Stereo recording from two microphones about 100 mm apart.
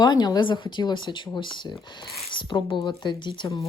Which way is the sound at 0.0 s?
45° left (ahead or behind).